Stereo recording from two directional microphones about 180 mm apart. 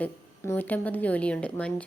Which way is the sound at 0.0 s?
10° left (ahead or behind).